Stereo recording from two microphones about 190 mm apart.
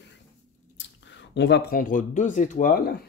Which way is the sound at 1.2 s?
65° left (ahead or behind).